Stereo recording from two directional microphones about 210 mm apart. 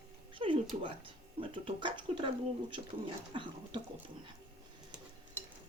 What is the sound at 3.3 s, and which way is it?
Speech, 25° right (ahead or behind).